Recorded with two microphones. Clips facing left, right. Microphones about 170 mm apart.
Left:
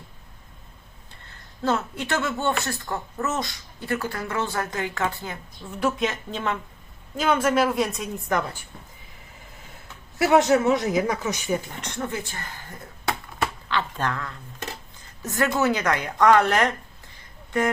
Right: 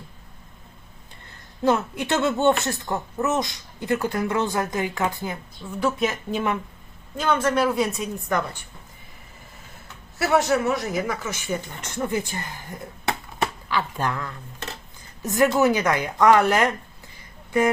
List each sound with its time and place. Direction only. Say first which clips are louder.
1.6 s speech: right 4 dB; 15° right (ahead or behind)
7.2 s a woman's voice: even; 5° left (ahead or behind)
10.2 s a woman's voice: left 2 dB; 20° left (ahead or behind)
11.9 s speech: right 5 dB; 15° right (ahead or behind)